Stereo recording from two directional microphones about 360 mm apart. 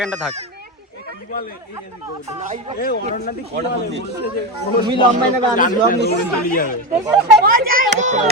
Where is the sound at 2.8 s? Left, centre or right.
Left.